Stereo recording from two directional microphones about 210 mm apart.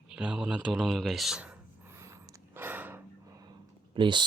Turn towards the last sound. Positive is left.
turn(degrees=-20)  # may be behind; listen again after turning